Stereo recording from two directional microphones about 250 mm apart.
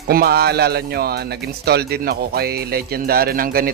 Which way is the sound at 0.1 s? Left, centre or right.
Right.